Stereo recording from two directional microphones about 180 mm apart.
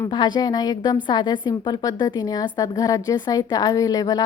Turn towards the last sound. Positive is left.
turn(degrees=20)  # may be behind; listen again after turning